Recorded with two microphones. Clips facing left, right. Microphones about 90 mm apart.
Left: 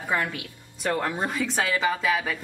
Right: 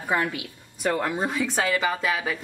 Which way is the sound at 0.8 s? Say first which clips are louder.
Right 1 dB; 5° right (ahead or behind).